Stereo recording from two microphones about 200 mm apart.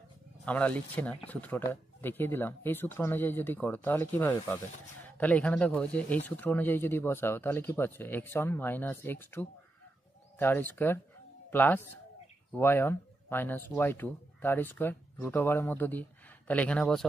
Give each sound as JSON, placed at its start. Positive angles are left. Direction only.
{"t": 0.5, "sound": "speech", "side_deg": 5}